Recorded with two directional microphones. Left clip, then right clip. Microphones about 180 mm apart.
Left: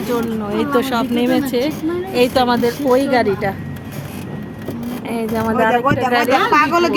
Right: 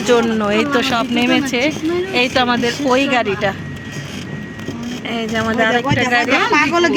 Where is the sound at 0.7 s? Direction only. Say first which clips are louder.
Right 1 dB; 15° left (ahead or behind).